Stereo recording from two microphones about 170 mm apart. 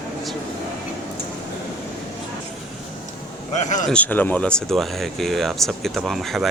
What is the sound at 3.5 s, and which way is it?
Speech, 45° left (ahead or behind).